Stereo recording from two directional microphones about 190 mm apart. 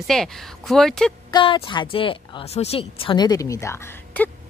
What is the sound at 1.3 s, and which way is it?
Speech, 25° left (ahead or behind).